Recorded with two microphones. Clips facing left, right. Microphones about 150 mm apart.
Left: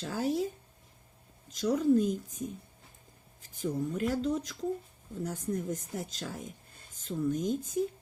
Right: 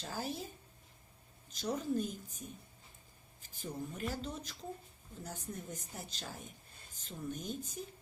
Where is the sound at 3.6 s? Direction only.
90° left.